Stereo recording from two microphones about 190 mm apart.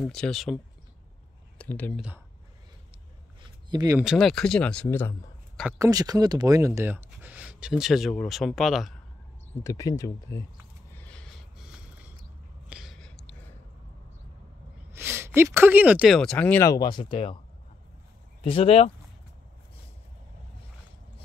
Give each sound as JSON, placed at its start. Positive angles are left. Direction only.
{"t": 0.0, "sound": "speech", "side_deg": 0}
{"t": 1.6, "sound": "speech", "side_deg": 10}
{"t": 2.0, "sound": "speech", "side_deg": -5}
{"t": 3.7, "sound": "speech", "side_deg": -20}
{"t": 4.0, "sound": "speech", "side_deg": 0}
{"t": 5.7, "sound": "speech", "side_deg": -20}
{"t": 9.6, "sound": "speech", "side_deg": 15}
{"t": 11.0, "sound": "a sound", "side_deg": 5}
{"t": 12.6, "sound": "a sound", "side_deg": 0}
{"t": 14.9, "sound": "speech", "side_deg": -10}
{"t": 18.4, "sound": "speech", "side_deg": 30}